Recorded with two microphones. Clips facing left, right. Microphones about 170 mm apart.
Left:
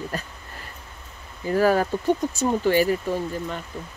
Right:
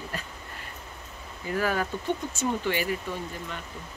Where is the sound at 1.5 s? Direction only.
35° left (ahead or behind).